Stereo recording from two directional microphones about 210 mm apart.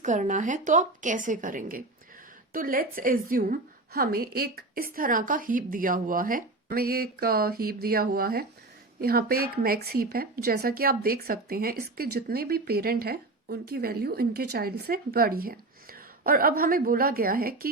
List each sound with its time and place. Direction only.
0.0 s a woman's voice: 35° right (ahead or behind)